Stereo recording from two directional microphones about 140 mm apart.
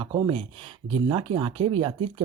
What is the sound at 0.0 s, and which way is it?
Speech, 35° right (ahead or behind).